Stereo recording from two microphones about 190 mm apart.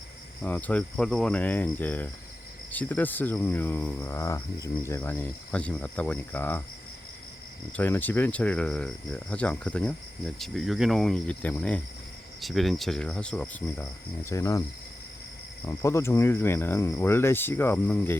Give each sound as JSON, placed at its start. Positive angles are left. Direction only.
{"t": 0.4, "sound": "speech", "side_deg": 10}
{"t": 7.8, "sound": "speech", "side_deg": 10}
{"t": 15.6, "sound": "speech", "side_deg": 15}